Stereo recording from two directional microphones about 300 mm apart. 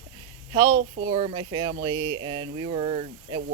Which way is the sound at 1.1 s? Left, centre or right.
Centre.